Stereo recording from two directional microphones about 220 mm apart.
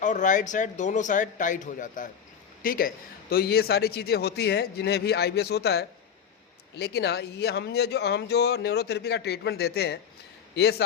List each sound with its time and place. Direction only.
0.0 s a man's voice: 35° left (ahead or behind)